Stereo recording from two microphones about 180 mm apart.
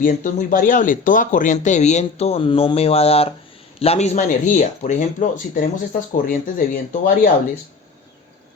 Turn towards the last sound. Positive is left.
turn(degrees=50)  # may be behind; listen again after turning